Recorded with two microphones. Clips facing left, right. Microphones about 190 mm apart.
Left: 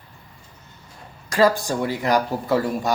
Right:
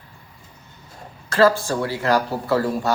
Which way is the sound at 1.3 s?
15° left (ahead or behind).